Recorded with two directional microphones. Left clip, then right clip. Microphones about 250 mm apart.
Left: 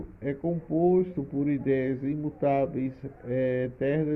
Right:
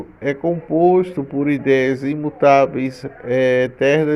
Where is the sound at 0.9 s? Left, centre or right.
Centre.